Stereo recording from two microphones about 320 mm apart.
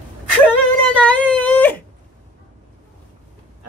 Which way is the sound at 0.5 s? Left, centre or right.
Centre.